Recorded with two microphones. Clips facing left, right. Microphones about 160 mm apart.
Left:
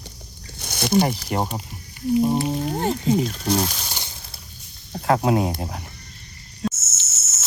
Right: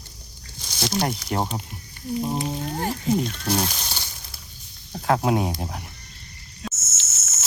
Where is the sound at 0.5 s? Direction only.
60° left (ahead or behind).